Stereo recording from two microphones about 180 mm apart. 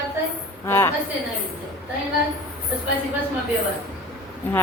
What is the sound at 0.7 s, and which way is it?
Speech, 15° left (ahead or behind).